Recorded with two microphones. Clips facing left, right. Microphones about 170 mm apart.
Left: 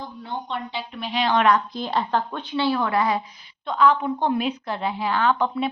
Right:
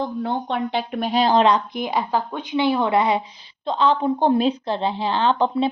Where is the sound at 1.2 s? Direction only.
35° right (ahead or behind).